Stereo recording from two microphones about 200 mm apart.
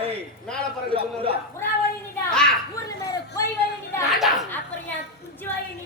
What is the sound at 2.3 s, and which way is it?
Children playing, 5° left (ahead or behind).